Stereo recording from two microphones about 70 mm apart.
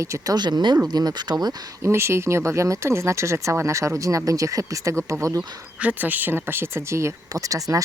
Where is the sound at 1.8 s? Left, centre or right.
Right.